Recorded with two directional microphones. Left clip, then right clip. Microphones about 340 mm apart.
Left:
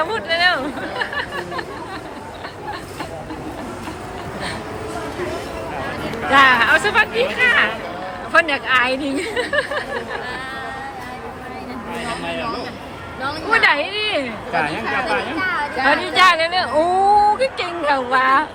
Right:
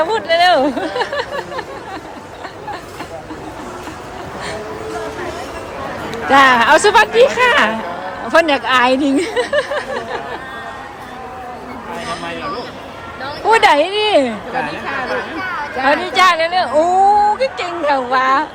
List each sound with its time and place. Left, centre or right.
0.0 s a sound: centre
6.3 s speech: centre
13.5 s speech: centre
15.8 s a woman's voice: centre